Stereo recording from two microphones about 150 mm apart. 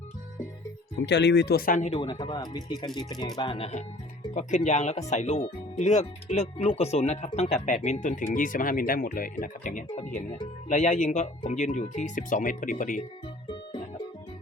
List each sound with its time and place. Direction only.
1.3 s speech: 90° left
1.8 s speech: 40° left (ahead or behind); by 13.0 s 60° left (ahead or behind)